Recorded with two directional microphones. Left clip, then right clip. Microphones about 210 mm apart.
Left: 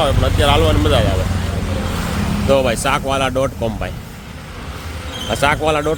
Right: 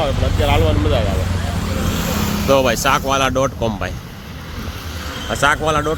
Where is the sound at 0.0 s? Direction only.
15° left (ahead or behind).